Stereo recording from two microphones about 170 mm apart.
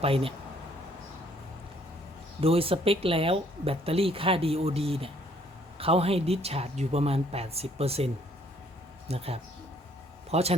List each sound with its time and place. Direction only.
0.0 s speech: 35° right (ahead or behind)
2.4 s speech: 35° right (ahead or behind)